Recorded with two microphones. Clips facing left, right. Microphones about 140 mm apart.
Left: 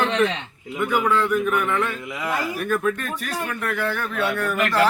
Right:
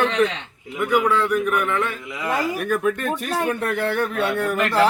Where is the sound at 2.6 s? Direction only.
15° right (ahead or behind).